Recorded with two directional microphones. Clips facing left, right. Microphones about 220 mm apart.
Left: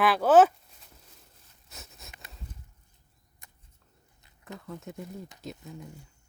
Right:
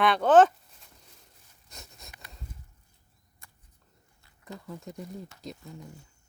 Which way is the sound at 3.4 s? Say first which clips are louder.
Even; 20° left (ahead or behind).